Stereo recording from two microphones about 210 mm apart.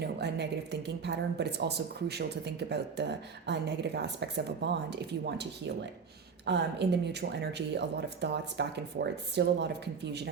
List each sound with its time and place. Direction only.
0.0 s a woman's voice: 55° right (ahead or behind)